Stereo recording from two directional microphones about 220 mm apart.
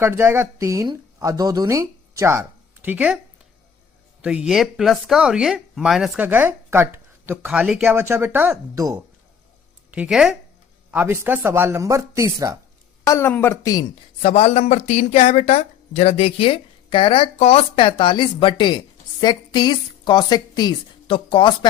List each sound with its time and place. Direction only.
0.0 s speech: 10° right (ahead or behind)
4.2 s speech: 5° right (ahead or behind)
13.1 s a woman's voice: 10° left (ahead or behind)